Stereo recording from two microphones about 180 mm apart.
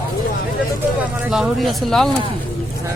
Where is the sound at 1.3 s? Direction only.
Centre (ahead or behind).